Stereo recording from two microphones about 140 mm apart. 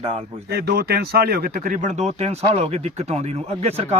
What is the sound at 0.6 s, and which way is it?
Speech, 90° right.